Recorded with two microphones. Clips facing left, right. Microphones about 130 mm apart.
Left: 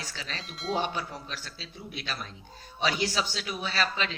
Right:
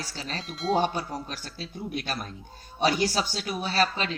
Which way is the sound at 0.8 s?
40° right (ahead or behind).